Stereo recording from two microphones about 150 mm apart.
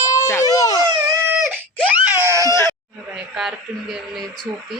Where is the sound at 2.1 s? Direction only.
15° right (ahead or behind).